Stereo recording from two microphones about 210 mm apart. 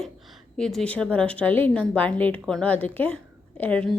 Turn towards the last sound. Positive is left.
turn(degrees=5)  # may be behind; listen again after turning